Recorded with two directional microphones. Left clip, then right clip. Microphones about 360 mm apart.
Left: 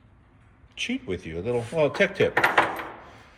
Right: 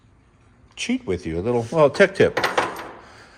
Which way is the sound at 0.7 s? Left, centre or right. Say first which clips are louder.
Right 5 dB; right.